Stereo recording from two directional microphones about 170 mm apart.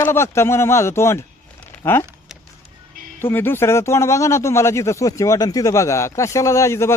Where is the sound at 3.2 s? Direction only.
15° left (ahead or behind).